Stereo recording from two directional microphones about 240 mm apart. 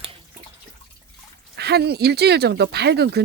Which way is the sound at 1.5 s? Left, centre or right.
Right.